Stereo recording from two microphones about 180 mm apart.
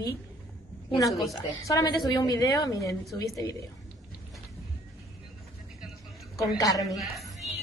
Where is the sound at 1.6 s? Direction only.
20° left (ahead or behind).